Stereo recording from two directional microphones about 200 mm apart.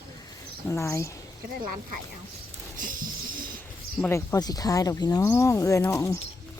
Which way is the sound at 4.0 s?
15° left (ahead or behind).